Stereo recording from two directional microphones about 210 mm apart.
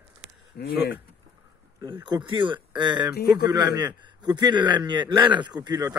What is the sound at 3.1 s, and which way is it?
Speech, 45° left (ahead or behind).